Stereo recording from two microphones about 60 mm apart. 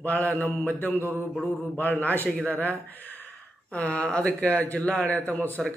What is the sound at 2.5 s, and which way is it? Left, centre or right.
A man's voice, left.